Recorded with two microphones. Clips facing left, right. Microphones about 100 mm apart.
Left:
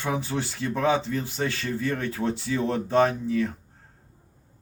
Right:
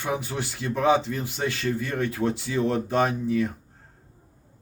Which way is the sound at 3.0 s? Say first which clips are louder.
Left 3 dB; 15° right (ahead or behind).